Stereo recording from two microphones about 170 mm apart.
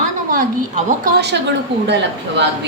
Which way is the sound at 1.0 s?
80° right.